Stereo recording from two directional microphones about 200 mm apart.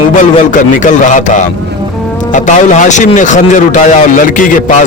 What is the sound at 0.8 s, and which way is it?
Speech, 40° left (ahead or behind).